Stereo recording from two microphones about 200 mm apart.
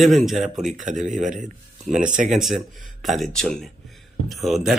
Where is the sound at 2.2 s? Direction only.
Centre (ahead or behind).